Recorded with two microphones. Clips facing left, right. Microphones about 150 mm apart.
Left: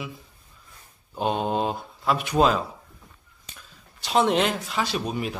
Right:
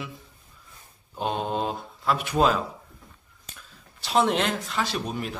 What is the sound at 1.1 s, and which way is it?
Speech, 5° left (ahead or behind).